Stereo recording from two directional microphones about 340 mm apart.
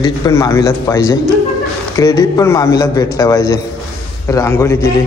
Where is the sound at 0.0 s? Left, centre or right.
Centre.